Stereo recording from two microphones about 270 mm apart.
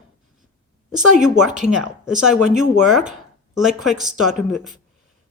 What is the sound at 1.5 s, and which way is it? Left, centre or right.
Speech, right.